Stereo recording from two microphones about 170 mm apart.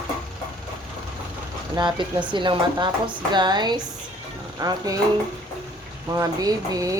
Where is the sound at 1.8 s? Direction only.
25° right (ahead or behind).